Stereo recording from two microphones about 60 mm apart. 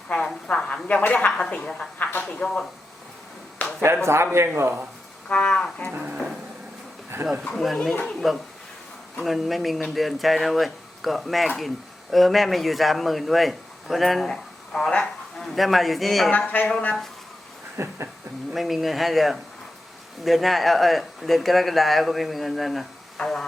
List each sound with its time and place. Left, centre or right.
0.4 s speech: centre
2.0 s a sound: left
2.3 s speech: centre
3.6 s a sound: centre
4.0 s a man's voice: right
5.3 s speech: centre
5.9 s speech: right
7.1 s a man's voice: right
8.0 s speech: centre
15.5 s speech: centre
16.6 s speech: centre
17.7 s a sound: right
18.5 s speech: centre